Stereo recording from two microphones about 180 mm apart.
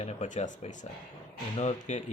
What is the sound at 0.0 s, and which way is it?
Speech, 40° left (ahead or behind).